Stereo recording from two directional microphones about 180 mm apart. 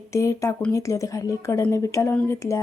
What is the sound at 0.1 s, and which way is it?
A woman's voice, 15° left (ahead or behind).